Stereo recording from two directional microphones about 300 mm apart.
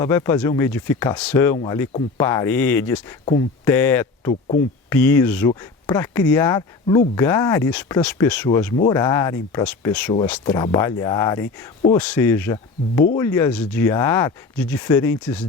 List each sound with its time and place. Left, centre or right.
0.0 s speech: centre
4.3 s speech: left
4.9 s speech: centre